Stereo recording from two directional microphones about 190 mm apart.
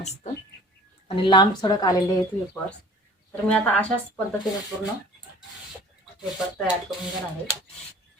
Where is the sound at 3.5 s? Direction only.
5° left (ahead or behind).